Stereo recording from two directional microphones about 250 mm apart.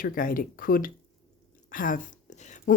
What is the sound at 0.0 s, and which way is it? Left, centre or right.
Speech, left.